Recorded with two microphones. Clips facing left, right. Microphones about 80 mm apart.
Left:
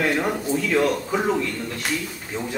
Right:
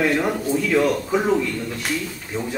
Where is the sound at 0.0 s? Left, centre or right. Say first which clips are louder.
Right 2 dB; centre.